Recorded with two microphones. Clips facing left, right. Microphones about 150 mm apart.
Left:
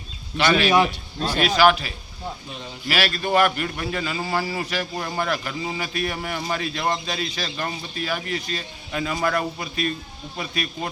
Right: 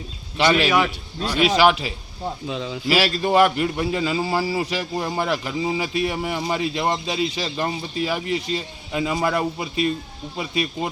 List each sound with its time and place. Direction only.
0.3 s a man's voice: 25° right (ahead or behind)
2.5 s a man's voice: 90° right
2.9 s a man's voice: 25° right (ahead or behind)